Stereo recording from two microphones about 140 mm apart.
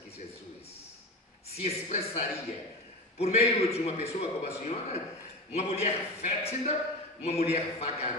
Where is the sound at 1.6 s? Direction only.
50° left (ahead or behind).